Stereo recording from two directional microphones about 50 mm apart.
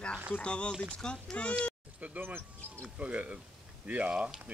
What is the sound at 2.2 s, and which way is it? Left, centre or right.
Speech, right.